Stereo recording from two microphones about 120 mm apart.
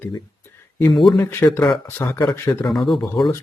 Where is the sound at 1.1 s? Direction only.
20° left (ahead or behind).